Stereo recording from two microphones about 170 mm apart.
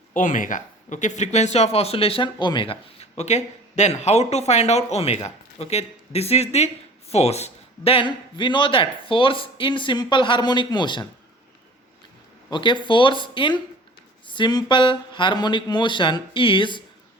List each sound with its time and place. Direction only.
0.1 s a man's voice: 50° left (ahead or behind); by 11.0 s 25° left (ahead or behind)
12.5 s a man's voice: 25° left (ahead or behind)